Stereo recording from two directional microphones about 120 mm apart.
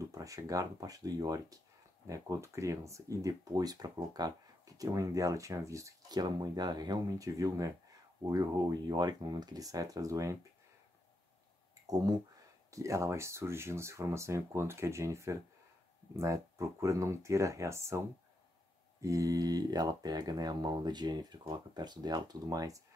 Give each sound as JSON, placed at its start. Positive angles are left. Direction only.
{"t": 0.1, "sound": "speech", "side_deg": -25}
{"t": 12.7, "sound": "speech", "side_deg": -25}